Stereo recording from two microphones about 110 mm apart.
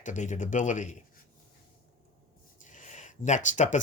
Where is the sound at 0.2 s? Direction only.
90° left.